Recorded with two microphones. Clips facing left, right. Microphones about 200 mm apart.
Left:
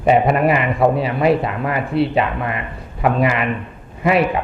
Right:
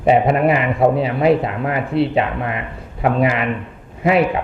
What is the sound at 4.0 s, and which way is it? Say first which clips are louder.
Speech: right 1 dB; 25° right (ahead or behind).